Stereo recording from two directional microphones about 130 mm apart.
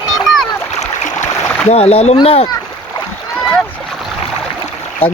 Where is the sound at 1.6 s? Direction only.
50° left (ahead or behind).